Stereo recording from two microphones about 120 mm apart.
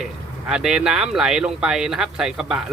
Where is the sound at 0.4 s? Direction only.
5° right (ahead or behind).